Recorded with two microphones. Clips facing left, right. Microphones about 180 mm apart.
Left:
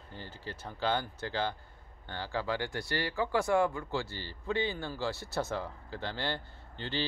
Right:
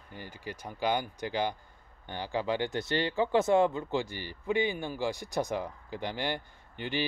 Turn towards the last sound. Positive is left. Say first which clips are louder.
# right 3 dB
turn(degrees=-15)  # may be behind; listen again after turning